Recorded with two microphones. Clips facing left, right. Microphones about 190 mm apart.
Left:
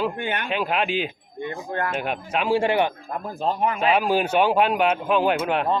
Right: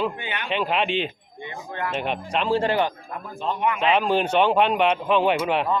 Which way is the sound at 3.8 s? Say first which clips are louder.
Even; 5° left (ahead or behind).